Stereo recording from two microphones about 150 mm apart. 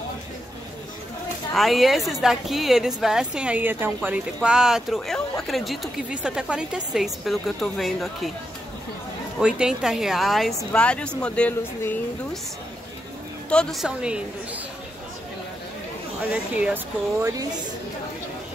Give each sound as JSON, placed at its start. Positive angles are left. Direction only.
{"t": 1.5, "sound": "a woman's voice", "side_deg": 0}
{"t": 9.4, "sound": "a woman's voice", "side_deg": -5}
{"t": 13.5, "sound": "a woman's voice", "side_deg": 5}
{"t": 16.2, "sound": "speech", "side_deg": -10}
{"t": 17.2, "sound": "speech", "side_deg": -25}